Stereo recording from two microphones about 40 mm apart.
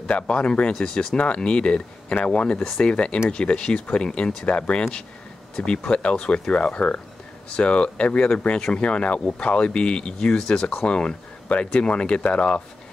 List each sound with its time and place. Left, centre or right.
0.3 s speech: left
0.7 s speech: centre
1.1 s speech: left